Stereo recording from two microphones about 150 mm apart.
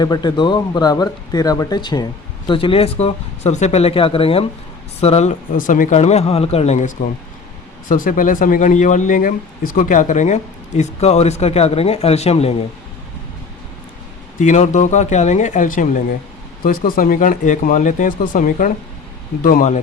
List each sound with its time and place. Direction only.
0.0 s speech: 25° left (ahead or behind); by 5.4 s 45° left (ahead or behind)
5.5 s speech: 65° left (ahead or behind)
7.9 s speech: 65° left (ahead or behind); by 12.5 s 45° left (ahead or behind)
14.3 s speech: 55° left (ahead or behind)
16.6 s speech: 70° left (ahead or behind)